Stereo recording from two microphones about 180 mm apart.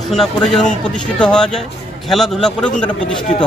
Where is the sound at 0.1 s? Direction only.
5° left (ahead or behind).